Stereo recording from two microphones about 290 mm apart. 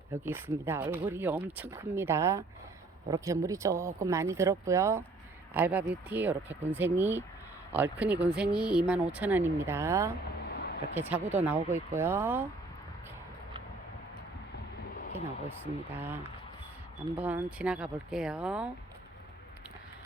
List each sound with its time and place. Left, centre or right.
0.1 s speech: centre
10.5 s a sound: left
11.1 s speech: centre
15.6 s speech: centre